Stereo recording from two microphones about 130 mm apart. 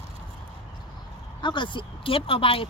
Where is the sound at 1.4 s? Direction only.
35° left (ahead or behind).